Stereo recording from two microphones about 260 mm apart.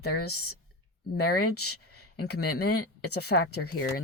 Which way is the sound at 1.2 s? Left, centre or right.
Left.